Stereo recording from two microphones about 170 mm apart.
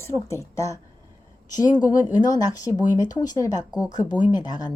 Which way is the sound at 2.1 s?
25° left (ahead or behind).